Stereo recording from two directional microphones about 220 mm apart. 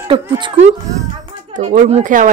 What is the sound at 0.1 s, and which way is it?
Speech, 20° right (ahead or behind).